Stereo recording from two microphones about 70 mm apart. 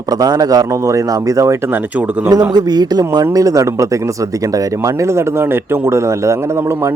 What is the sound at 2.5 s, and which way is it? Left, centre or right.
A man's voice, right.